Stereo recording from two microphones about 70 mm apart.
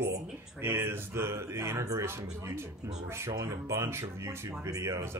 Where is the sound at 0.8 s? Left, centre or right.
Right.